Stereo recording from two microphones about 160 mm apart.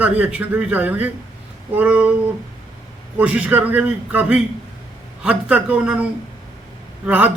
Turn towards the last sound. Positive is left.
turn(degrees=-10)  # may be behind; listen again after turning